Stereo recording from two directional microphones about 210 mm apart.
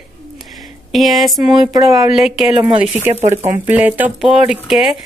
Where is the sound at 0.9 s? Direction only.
Centre (ahead or behind).